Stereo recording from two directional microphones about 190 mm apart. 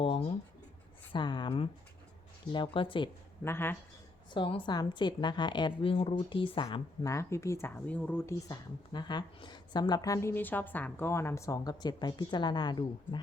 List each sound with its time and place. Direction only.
0.0 s writing: 30° left (ahead or behind)
1.1 s a woman's voice: 25° left (ahead or behind)
3.4 s speech: 10° left (ahead or behind)
4.4 s a woman's voice: 25° left (ahead or behind)